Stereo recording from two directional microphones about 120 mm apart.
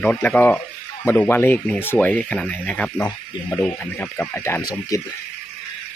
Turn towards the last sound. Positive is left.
turn(degrees=30)  # may be behind; listen again after turning